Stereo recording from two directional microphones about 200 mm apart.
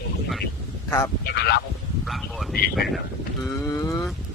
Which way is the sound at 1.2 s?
50° left (ahead or behind).